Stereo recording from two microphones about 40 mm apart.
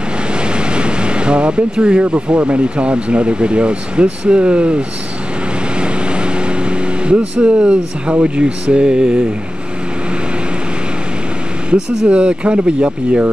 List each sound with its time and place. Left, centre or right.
0.3 s speech: right
5.8 s vehicle: right
11.7 s speech: centre
12.1 s speech: right